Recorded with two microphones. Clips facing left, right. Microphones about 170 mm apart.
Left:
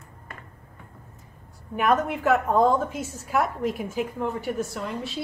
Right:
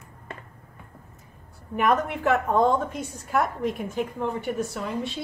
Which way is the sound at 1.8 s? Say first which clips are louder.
Even; centre (ahead or behind).